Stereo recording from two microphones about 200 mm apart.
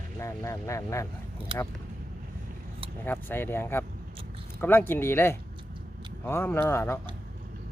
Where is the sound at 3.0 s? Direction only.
10° left (ahead or behind).